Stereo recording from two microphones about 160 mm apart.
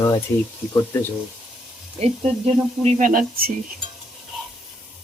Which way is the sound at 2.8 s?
55° right (ahead or behind).